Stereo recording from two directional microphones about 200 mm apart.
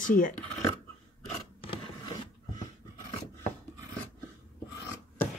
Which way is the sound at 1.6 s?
25° left (ahead or behind).